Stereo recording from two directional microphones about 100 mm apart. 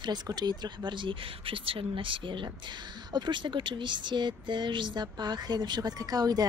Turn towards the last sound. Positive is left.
turn(degrees=-40)  # may be behind; listen again after turning